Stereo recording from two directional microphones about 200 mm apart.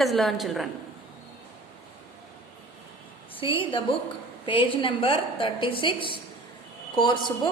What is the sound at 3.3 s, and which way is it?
A woman's voice, 25° left (ahead or behind).